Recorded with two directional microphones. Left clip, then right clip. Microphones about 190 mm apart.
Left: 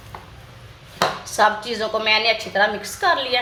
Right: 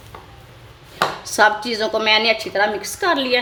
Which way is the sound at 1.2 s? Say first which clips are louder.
Right 4 dB; 50° right (ahead or behind).